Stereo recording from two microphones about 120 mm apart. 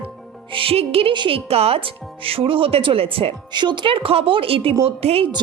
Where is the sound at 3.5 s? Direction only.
40° right (ahead or behind).